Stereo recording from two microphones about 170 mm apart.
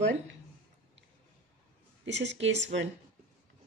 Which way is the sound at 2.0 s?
90° right.